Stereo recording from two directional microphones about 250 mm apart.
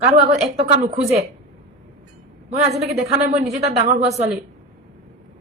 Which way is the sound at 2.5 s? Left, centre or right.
Right.